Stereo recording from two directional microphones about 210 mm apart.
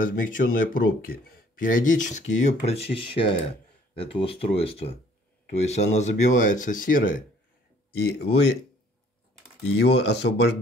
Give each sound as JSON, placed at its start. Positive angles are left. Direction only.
{"t": 0.0, "sound": "speech", "side_deg": 40}
{"t": 9.8, "sound": "speech", "side_deg": 55}